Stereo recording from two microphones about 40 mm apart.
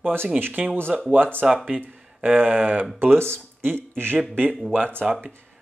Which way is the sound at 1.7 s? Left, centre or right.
Right.